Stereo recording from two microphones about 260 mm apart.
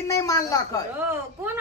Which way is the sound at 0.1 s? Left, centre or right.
Centre.